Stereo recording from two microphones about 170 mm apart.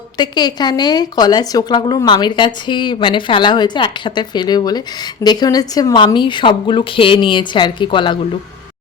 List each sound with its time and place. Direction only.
0.2 s a woman's voice: 25° left (ahead or behind)